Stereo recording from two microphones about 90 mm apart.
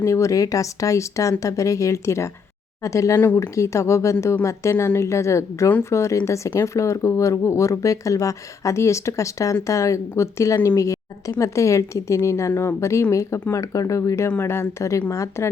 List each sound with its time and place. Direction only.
0.0 s speech: 35° left (ahead or behind)
3.2 s speech: 20° left (ahead or behind)
3.4 s speech: 35° left (ahead or behind)